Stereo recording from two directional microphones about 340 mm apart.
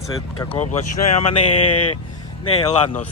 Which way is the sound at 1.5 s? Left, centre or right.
Left.